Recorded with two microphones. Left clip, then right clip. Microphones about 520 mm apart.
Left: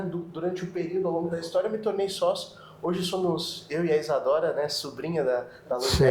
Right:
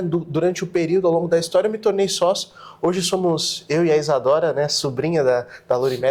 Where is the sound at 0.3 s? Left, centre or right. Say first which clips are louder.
Right 11 dB; right.